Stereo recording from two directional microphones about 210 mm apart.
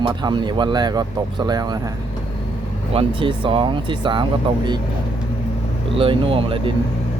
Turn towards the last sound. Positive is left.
turn(degrees=-25)  # may be behind; listen again after turning